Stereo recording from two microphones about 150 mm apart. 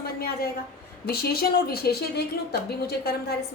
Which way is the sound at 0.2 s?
90° left.